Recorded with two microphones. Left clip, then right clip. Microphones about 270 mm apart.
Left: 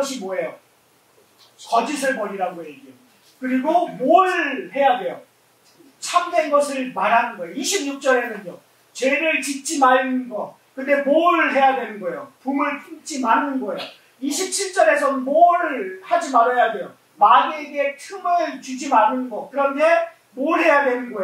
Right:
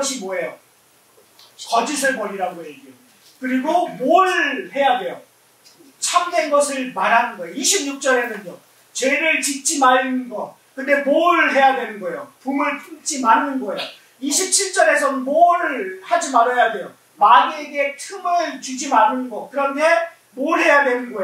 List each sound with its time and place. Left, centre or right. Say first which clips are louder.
0.3 s a man's voice: right 1 dB; centre
1.7 s a man's voice: right 1 dB; centre
10.3 s speech: right 1 dB; centre
10.9 s a man's voice: right 1 dB; centre
19.5 s a man's voice: even; centre